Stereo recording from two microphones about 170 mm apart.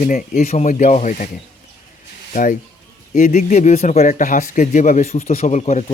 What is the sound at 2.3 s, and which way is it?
Speech, 50° left (ahead or behind).